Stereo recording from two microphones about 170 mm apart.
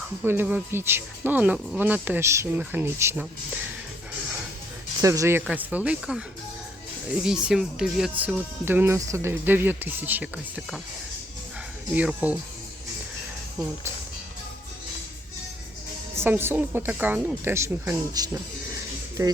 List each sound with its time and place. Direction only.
0.2 s speech: 10° right (ahead or behind)
4.9 s speech: 20° right (ahead or behind)
11.9 s speech: 10° right (ahead or behind)
16.1 s speech: 15° right (ahead or behind)